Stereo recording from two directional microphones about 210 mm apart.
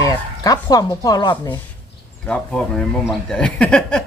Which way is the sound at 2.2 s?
5° left (ahead or behind).